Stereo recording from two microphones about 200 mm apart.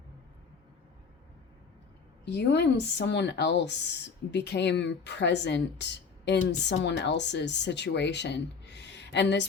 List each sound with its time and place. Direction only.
2.2 s speech: 55° left (ahead or behind)